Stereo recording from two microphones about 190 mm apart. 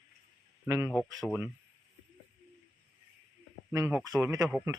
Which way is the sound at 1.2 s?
5° left (ahead or behind).